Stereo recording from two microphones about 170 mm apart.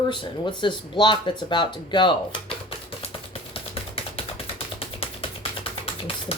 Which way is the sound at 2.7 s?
35° left (ahead or behind).